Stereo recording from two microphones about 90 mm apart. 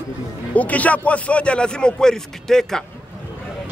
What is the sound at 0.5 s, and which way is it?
A man's voice, 15° left (ahead or behind).